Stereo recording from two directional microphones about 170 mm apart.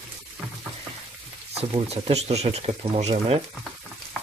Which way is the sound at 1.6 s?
35° right (ahead or behind).